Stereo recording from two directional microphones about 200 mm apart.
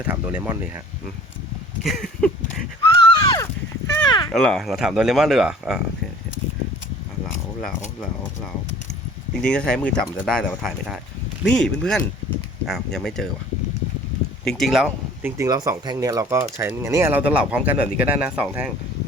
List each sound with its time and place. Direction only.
0.1 s speech: 10° right (ahead or behind)
1.8 s a sound: centre (ahead or behind)
3.2 s a sound: 20° left (ahead or behind)
4.3 s speech: 5° left (ahead or behind)
9.3 s speech: 5° left (ahead or behind)
14.4 s speech: centre (ahead or behind)
15.4 s speech: 20° right (ahead or behind)